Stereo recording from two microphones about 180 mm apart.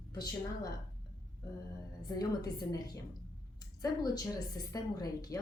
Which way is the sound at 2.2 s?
20° left (ahead or behind).